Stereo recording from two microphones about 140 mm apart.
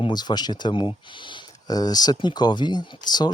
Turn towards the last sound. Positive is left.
turn(degrees=30)  # may be behind; listen again after turning